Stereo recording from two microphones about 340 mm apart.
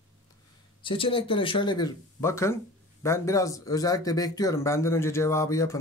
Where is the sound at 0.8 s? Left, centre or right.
Centre.